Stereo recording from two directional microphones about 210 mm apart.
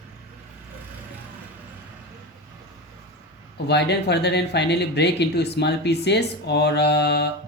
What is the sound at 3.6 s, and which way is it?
Speech, 55° left (ahead or behind).